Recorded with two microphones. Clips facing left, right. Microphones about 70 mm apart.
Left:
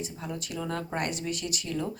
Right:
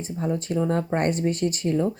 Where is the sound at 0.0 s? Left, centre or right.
Right.